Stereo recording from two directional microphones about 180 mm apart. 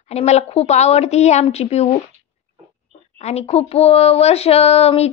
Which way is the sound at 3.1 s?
35° left (ahead or behind).